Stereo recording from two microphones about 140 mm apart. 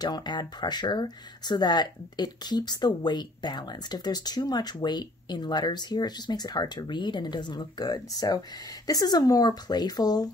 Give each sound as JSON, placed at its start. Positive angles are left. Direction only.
{"t": 0.0, "sound": "speech", "side_deg": 30}